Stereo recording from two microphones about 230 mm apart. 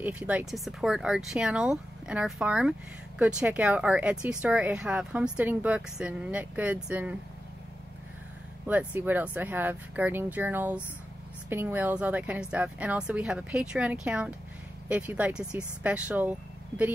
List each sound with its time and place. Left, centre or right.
0.0 s speech: centre
8.6 s speech: centre